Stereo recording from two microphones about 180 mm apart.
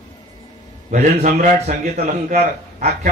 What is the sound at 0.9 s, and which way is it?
Speech, 50° right (ahead or behind).